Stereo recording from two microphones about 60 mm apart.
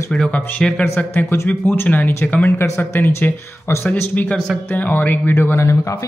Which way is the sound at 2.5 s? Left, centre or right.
Left.